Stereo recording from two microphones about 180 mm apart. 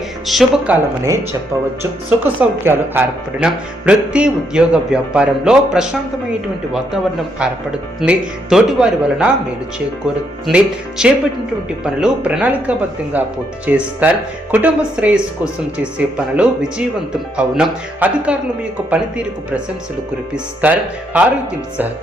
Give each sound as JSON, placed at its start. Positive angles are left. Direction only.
{"t": 0.3, "sound": "speech", "side_deg": 0}
{"t": 1.0, "sound": "speech", "side_deg": -15}
{"t": 10.4, "sound": "speech", "side_deg": -5}
{"t": 20.3, "sound": "speech", "side_deg": -10}